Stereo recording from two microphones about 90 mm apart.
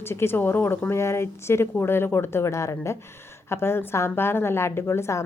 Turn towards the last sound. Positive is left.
turn(degrees=30)  # may be behind; listen again after turning